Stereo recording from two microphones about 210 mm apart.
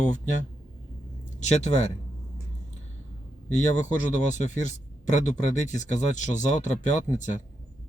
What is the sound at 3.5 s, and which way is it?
Speech, 35° left (ahead or behind).